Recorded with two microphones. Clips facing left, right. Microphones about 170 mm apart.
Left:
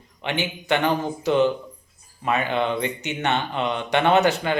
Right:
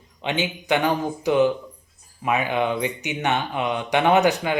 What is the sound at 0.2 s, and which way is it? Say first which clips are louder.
Speech: right 1 dB; 20° right (ahead or behind).